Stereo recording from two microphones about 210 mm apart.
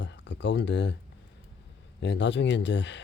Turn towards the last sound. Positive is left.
turn(degrees=55)  # may be behind; listen again after turning